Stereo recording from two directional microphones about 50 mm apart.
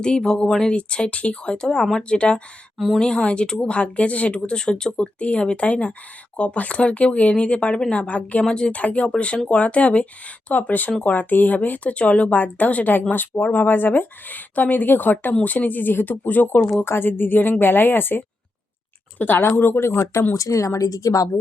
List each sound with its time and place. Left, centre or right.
0.0 s speech: centre
2.1 s speech: left
2.7 s speech: centre
3.0 s a woman's voice: centre; by 16.6 s left
16.8 s speech: left
19.2 s speech: left
20.3 s a woman's voice: left